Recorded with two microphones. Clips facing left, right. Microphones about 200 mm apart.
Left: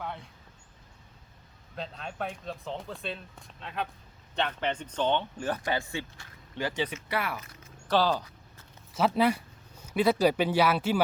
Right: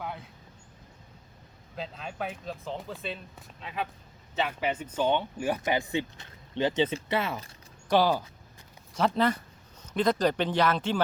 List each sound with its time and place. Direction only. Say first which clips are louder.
0.0 s vehicle: even; 5° right (ahead or behind)
1.7 s speech: right 1 dB; 5° right (ahead or behind); by 7.5 s 25° right (ahead or behind)
7.9 s speech: right 2 dB; 15° right (ahead or behind)
8.9 s speech: left 1 dB; 5° left (ahead or behind)